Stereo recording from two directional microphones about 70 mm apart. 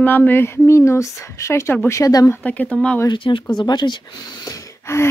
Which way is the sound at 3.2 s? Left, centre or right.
Left.